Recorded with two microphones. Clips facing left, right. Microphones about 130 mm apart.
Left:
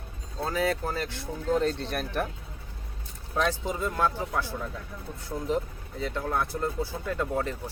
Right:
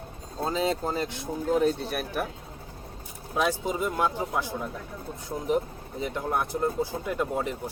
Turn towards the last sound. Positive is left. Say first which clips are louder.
# right 1 dB
turn(degrees=-15)  # may be behind; listen again after turning